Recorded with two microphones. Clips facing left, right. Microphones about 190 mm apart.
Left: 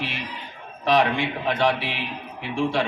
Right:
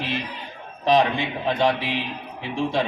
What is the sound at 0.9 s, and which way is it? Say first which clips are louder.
A man's voice: right 1 dB; 20° right (ahead or behind).